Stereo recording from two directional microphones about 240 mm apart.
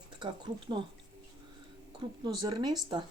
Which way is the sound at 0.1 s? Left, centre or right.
Centre.